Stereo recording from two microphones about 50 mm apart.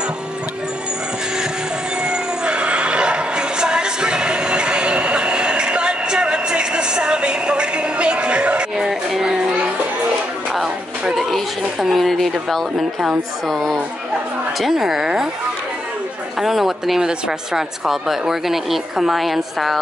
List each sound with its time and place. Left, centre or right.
2.0 s neigh: centre
8.7 s a sound: centre
10.5 s speech: centre
14.6 s speech: centre
16.3 s speech: centre